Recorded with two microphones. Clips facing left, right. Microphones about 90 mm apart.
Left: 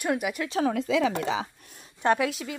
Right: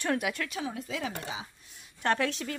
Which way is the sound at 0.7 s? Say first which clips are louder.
Left 11 dB; 90° left.